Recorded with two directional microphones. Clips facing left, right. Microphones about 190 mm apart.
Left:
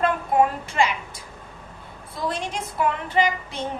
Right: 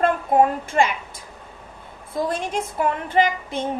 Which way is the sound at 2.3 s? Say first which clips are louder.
Right 3 dB; 50° right (ahead or behind).